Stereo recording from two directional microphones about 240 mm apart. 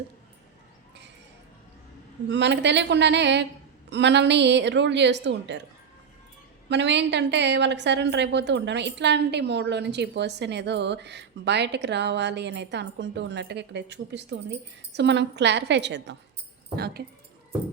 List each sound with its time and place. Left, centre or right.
2.3 s a woman's voice: right
6.7 s a woman's voice: right